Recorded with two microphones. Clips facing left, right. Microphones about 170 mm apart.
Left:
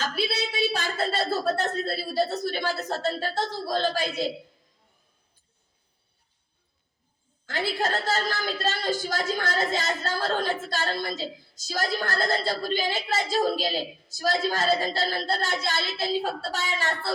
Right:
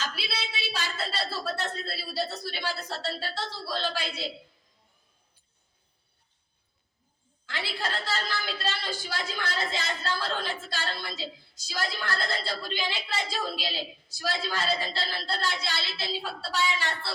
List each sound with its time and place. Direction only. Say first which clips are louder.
0.0 s a woman's voice: left 7 dB; 45° left (ahead or behind)
7.4 s a woman's voice: left 7 dB; 45° left (ahead or behind)